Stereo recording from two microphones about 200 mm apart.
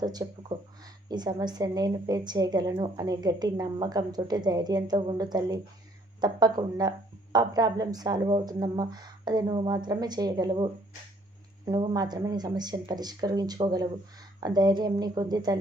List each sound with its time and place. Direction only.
0.0 s a woman's voice: 20° right (ahead or behind)